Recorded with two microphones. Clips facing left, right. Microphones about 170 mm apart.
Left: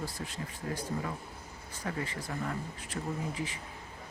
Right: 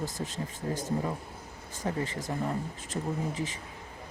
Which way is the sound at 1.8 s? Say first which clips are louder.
Right 5 dB; 25° right (ahead or behind).